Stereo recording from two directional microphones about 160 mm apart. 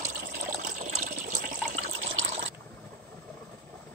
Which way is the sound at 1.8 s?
40° right (ahead or behind).